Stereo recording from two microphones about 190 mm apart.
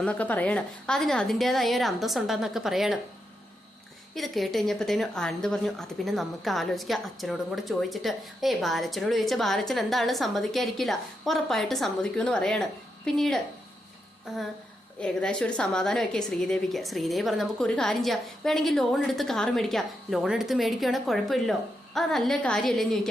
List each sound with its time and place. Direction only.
0.0 s a woman's voice: 5° left (ahead or behind)
4.1 s a woman's voice: centre (ahead or behind)